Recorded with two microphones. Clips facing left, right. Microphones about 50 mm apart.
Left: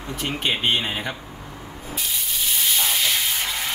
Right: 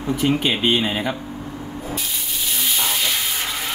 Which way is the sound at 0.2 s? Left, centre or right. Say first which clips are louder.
Right 4 dB; centre.